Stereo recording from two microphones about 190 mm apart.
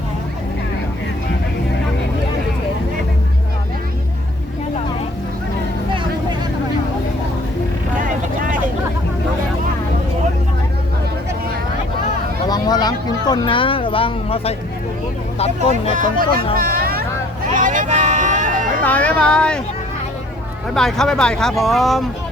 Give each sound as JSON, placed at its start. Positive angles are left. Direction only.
{"t": 8.0, "sound": "vehicle", "side_deg": -45}
{"t": 12.5, "sound": "a sound", "side_deg": 20}
{"t": 15.4, "sound": "speech", "side_deg": 30}
{"t": 16.6, "sound": "hubbub", "side_deg": -50}
{"t": 17.5, "sound": "vehicle", "side_deg": -40}
{"t": 18.8, "sound": "speech", "side_deg": 10}
{"t": 20.7, "sound": "speech", "side_deg": 0}